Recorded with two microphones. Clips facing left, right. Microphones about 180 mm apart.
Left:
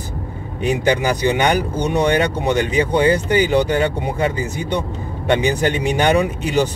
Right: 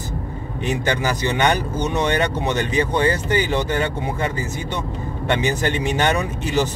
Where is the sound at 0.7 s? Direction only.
15° left (ahead or behind).